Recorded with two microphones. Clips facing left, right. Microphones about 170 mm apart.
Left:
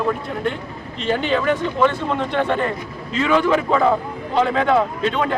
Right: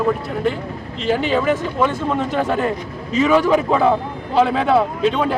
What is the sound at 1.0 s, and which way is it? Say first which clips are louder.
A man's voice: right 2 dB; 5° right (ahead or behind).